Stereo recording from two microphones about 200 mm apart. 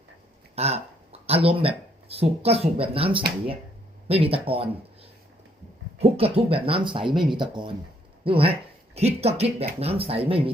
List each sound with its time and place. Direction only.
0.5 s speech: 30° right (ahead or behind)
6.0 s speech: 30° right (ahead or behind)